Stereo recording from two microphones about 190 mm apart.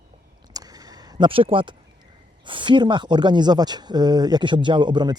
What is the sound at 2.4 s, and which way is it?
Speech, 25° right (ahead or behind).